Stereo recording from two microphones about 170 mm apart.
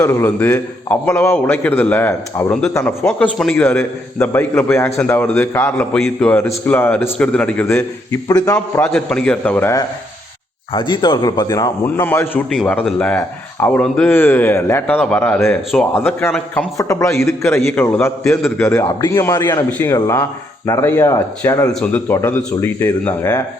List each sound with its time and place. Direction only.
0.0 s a man's voice: 15° left (ahead or behind)
10.8 s a man's voice: 25° left (ahead or behind)